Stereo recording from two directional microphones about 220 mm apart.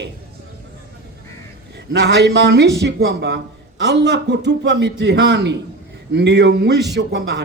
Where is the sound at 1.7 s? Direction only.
50° right (ahead or behind).